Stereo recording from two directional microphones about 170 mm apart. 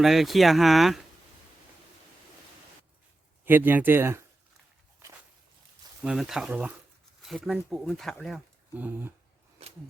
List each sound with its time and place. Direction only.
0.0 s speech: centre (ahead or behind)
3.4 s speech: 10° right (ahead or behind)
6.0 s speech: 5° right (ahead or behind)
8.7 s speech: 10° right (ahead or behind)
9.6 s a sound: 35° right (ahead or behind)